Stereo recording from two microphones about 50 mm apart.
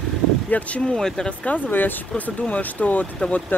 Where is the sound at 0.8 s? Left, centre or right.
Centre.